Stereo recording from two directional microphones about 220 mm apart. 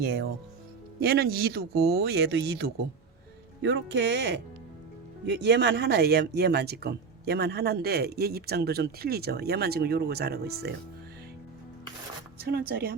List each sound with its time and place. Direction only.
0.0 s speech: 45° right (ahead or behind)
3.6 s speech: 60° right (ahead or behind)
12.4 s speech: 45° right (ahead or behind)